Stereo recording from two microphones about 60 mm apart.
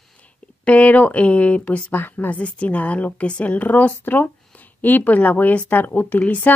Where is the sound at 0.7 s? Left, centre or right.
Left.